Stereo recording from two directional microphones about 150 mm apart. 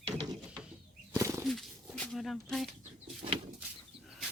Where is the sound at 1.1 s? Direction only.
20° right (ahead or behind).